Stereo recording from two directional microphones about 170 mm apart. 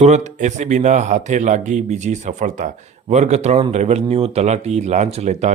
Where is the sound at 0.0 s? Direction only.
45° right (ahead or behind).